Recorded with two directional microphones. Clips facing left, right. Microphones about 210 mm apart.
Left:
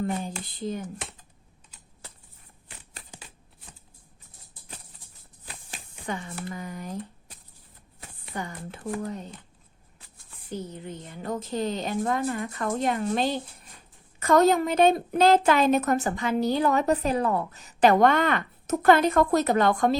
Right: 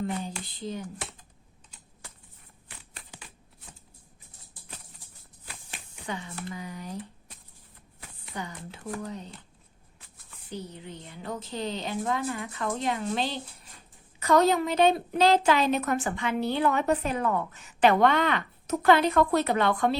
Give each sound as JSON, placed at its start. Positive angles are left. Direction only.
{"t": 2.9, "sound": "a sound", "side_deg": 30}
{"t": 5.7, "sound": "speech", "side_deg": 50}
{"t": 8.4, "sound": "a woman's voice", "side_deg": 50}
{"t": 10.5, "sound": "a woman's voice", "side_deg": 45}